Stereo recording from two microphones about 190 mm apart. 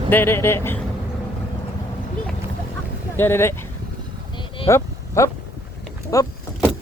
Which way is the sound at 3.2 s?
10° left (ahead or behind).